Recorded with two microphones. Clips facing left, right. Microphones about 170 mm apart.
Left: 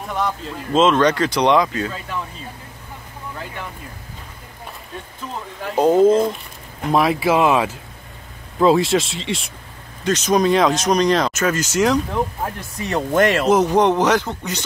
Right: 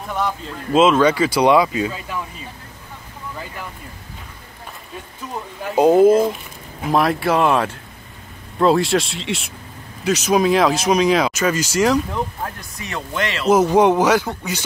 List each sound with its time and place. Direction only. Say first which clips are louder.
0.0 s speech: even; centre (ahead or behind)
5.7 s speech: right 2 dB; 15° right (ahead or behind)
12.4 s speech: left 5 dB; 35° left (ahead or behind)
13.1 s speech: left 8 dB; 45° left (ahead or behind)
13.5 s speech: right 1 dB; 5° right (ahead or behind)